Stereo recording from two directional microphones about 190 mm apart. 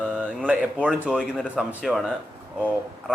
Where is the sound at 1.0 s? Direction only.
5° right (ahead or behind).